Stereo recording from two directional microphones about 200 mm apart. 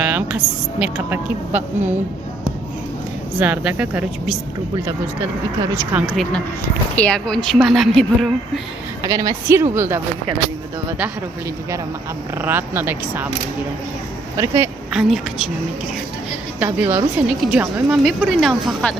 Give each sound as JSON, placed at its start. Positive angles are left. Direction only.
{"t": 0.0, "sound": "a woman's voice", "side_deg": -10}
{"t": 3.4, "sound": "a woman's voice", "side_deg": -5}
{"t": 5.8, "sound": "a woman's voice", "side_deg": -5}
{"t": 6.9, "sound": "speech", "side_deg": 5}
{"t": 9.0, "sound": "a woman's voice", "side_deg": -15}
{"t": 12.4, "sound": "a woman's voice", "side_deg": -10}
{"t": 14.3, "sound": "a woman's voice", "side_deg": -15}
{"t": 14.9, "sound": "speech", "side_deg": 0}
{"t": 16.6, "sound": "a woman's voice", "side_deg": -15}
{"t": 17.2, "sound": "speech", "side_deg": -5}